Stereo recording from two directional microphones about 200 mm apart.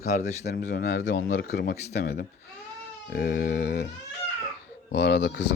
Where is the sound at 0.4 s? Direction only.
55° left (ahead or behind).